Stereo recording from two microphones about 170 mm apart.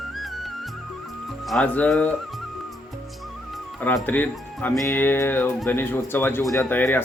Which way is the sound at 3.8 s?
10° left (ahead or behind).